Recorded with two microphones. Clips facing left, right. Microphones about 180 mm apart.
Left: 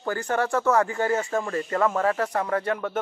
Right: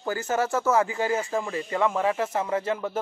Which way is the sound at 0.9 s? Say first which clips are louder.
Left 2 dB; 5° right (ahead or behind).